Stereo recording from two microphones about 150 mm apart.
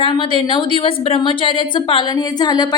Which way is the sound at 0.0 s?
35° left (ahead or behind).